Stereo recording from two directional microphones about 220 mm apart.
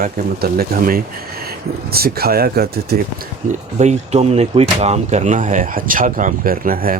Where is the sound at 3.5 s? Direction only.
30° right (ahead or behind).